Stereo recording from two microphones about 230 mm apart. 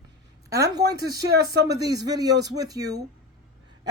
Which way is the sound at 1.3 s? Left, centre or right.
Right.